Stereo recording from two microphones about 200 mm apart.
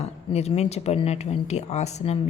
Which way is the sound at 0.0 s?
30° left (ahead or behind).